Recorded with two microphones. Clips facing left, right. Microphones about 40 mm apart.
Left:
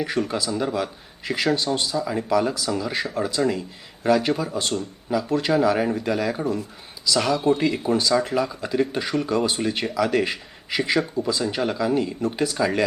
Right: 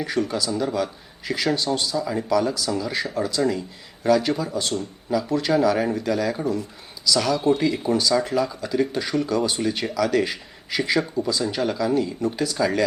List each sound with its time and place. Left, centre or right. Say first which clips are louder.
0.0 s speech: even; centre
11.5 s speech: right 1 dB; centre